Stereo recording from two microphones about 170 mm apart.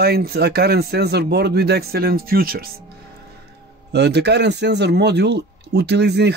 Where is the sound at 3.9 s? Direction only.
80° right.